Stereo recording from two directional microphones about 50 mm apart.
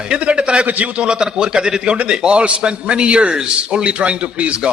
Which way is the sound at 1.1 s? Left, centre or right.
Centre.